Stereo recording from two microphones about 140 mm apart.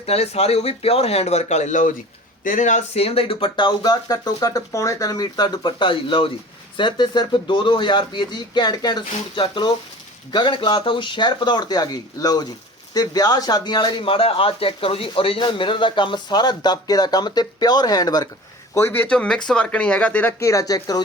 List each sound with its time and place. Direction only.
0.0 s speech: 45° left (ahead or behind); by 18.3 s 25° left (ahead or behind)
18.7 s speech: 15° left (ahead or behind)